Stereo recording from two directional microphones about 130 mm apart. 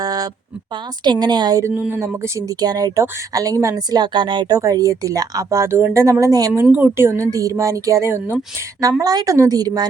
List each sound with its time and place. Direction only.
0.0 s a sound: 30° right (ahead or behind)
1.0 s a woman's voice: 35° right (ahead or behind)
1.7 s speech: 10° right (ahead or behind)
2.0 s speech: 25° right (ahead or behind)
6.5 s speech: 15° right (ahead or behind); by 9.8 s 30° right (ahead or behind)